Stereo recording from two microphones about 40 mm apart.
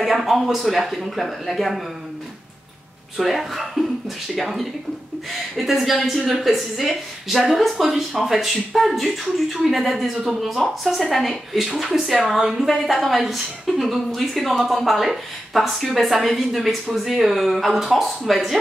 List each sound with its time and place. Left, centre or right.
0.0 s a woman's voice: centre
3.2 s a woman's voice: centre